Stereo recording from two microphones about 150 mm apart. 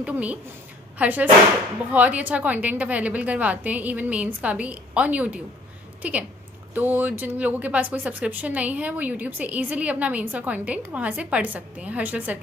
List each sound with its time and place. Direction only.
0.0 s speech: 10° right (ahead or behind)